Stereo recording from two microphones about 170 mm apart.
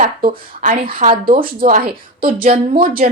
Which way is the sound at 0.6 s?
55° right (ahead or behind).